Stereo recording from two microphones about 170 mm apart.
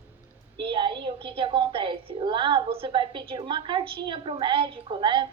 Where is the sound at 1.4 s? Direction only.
30° right (ahead or behind).